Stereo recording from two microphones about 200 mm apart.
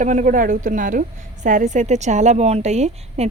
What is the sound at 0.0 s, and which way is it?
A woman's voice, 40° right (ahead or behind).